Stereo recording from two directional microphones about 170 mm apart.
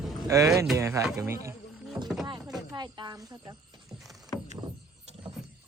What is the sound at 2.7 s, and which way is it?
Speech, 25° right (ahead or behind).